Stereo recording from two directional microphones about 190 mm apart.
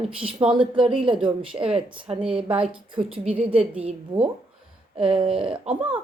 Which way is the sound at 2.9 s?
30° right (ahead or behind).